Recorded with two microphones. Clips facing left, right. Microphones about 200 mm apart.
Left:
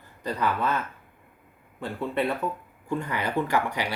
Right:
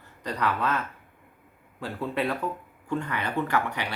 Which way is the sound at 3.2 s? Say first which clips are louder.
Left 2 dB; 60° right (ahead or behind).